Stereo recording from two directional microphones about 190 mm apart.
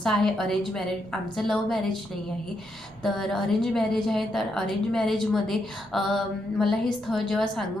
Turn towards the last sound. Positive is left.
turn(degrees=0)  # may be behind; listen again after turning